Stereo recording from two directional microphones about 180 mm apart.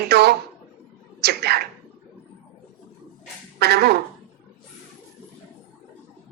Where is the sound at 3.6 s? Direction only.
65° right (ahead or behind).